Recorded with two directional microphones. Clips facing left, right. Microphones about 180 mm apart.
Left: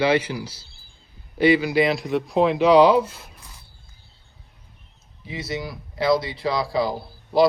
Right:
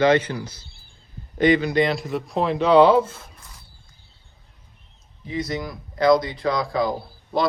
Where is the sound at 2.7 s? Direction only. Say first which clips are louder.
Right 2 dB; 25° right (ahead or behind).